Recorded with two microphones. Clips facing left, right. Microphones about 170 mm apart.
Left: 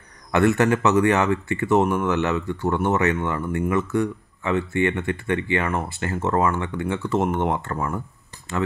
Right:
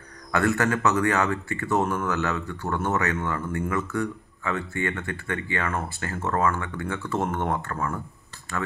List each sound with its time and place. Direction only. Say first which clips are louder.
0.3 s speech: left 5 dB; 20° left (ahead or behind)